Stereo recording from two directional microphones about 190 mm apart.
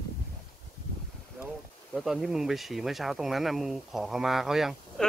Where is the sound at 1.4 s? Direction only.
10° right (ahead or behind).